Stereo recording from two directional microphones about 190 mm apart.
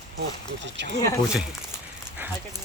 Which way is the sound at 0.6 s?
65° right (ahead or behind).